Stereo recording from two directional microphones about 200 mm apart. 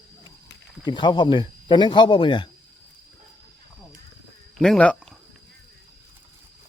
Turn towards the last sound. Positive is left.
turn(degrees=5)  # may be behind; listen again after turning